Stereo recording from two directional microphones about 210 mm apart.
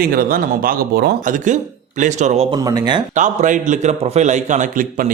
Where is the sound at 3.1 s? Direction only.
35° right (ahead or behind).